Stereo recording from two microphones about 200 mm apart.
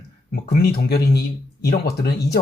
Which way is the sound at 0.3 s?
50° left (ahead or behind).